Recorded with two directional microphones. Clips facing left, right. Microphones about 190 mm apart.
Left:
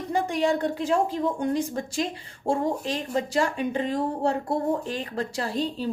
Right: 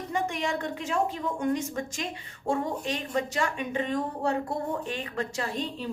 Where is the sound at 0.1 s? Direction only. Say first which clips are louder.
Left 6 dB; 35° left (ahead or behind).